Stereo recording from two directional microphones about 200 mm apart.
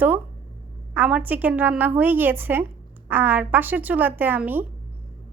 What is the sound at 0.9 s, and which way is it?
A woman's voice, 10° right (ahead or behind).